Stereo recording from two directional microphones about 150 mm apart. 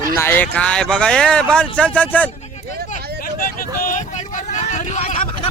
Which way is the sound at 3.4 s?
65° left (ahead or behind).